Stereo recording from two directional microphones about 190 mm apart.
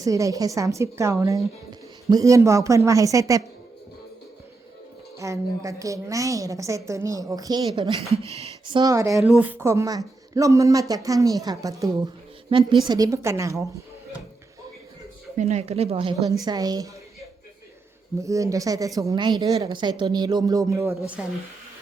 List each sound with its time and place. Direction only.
0.0 s a woman's voice: 15° right (ahead or behind)
5.1 s a woman's voice: 15° right (ahead or behind)
8.3 s speech: 35° right (ahead or behind)
8.8 s a woman's voice: 15° right (ahead or behind)
9.1 s a woman's voice: 5° right (ahead or behind)
15.4 s a woman's voice: 35° right (ahead or behind)
16.5 s speech: 20° right (ahead or behind)
18.2 s a woman's voice: 15° right (ahead or behind)